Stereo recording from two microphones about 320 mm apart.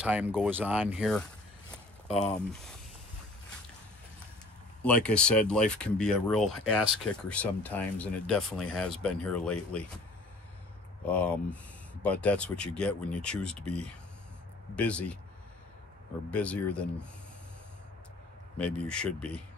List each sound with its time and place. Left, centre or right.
0.0 s speech: centre
4.8 s speech: centre
11.1 s speech: centre
14.8 s speech: centre
16.3 s speech: centre
18.6 s speech: centre